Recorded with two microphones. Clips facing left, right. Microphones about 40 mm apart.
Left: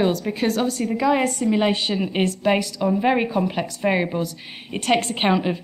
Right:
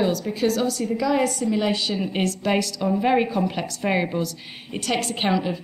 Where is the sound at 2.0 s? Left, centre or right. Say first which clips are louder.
Left 2 dB; centre.